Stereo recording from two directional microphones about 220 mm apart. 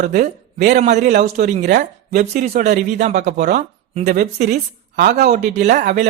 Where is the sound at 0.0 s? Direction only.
35° right (ahead or behind).